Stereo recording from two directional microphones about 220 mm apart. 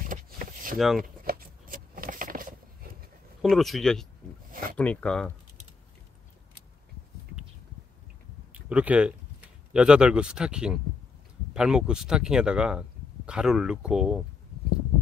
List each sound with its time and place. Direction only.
0.0 s vehicle: 35° right (ahead or behind)
0.7 s speech: centre (ahead or behind)
1.2 s a sound: 40° right (ahead or behind)
3.4 s speech: centre (ahead or behind)
8.6 s speech: 5° right (ahead or behind)